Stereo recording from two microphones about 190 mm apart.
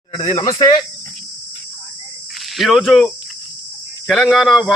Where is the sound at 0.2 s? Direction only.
30° left (ahead or behind).